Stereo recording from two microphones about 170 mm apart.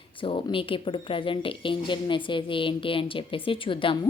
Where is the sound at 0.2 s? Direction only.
30° left (ahead or behind).